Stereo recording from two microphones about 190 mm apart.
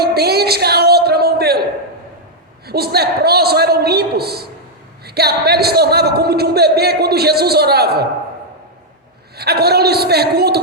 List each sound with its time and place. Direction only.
0.0 s a sound: 55° right (ahead or behind)
2.6 s speech: 55° right (ahead or behind)
9.4 s speech: 55° right (ahead or behind)